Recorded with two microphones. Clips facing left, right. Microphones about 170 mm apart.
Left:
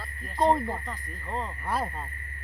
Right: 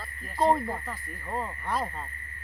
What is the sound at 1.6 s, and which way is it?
Speech, 5° left (ahead or behind).